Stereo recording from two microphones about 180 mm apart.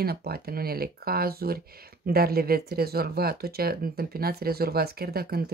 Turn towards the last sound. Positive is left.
turn(degrees=-60)  # may be behind; listen again after turning